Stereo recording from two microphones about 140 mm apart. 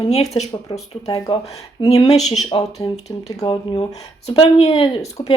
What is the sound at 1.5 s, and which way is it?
Speech, 45° left (ahead or behind).